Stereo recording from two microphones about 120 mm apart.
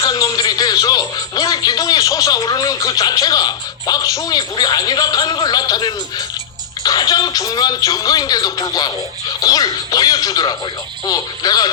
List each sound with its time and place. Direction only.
0.0 s speech: 30° left (ahead or behind)